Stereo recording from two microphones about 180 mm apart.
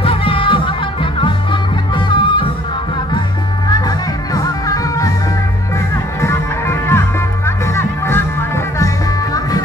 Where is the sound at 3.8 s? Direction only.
20° left (ahead or behind).